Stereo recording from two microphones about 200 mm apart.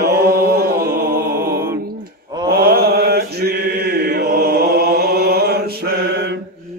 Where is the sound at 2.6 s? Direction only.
50° right (ahead or behind).